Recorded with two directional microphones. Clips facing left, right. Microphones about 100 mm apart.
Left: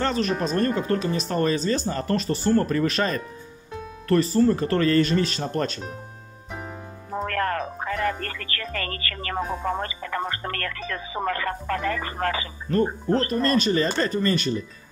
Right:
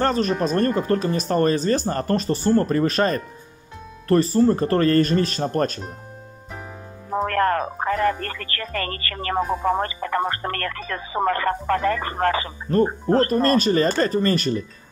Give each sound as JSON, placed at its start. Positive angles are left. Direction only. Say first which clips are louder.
{"t": 0.0, "sound": "speech", "louder": "right 3 dB", "side_deg": -40}
{"t": 7.2, "sound": "speech", "louder": "right 5 dB", "side_deg": -45}